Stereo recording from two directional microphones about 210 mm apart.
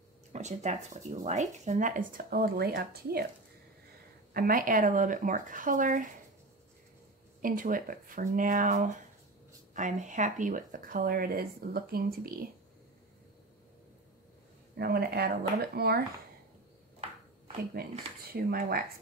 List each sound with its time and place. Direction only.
0.3 s speech: 35° right (ahead or behind)
4.3 s speech: 45° right (ahead or behind)
7.4 s speech: 40° right (ahead or behind)
14.8 s speech: 45° right (ahead or behind)
17.7 s speech: 45° right (ahead or behind)